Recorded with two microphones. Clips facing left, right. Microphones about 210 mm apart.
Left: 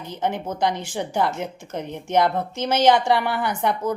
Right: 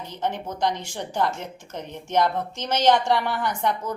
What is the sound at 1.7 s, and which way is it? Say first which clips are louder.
Speech: left 4 dB; 60° left (ahead or behind).